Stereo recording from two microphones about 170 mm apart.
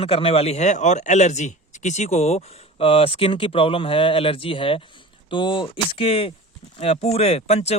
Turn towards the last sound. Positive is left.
turn(degrees=40)  # may be behind; listen again after turning